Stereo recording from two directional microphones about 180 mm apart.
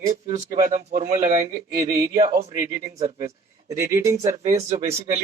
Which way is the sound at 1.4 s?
15° right (ahead or behind).